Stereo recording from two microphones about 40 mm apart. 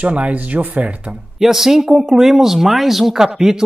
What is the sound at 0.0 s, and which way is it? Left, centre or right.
Speech, right.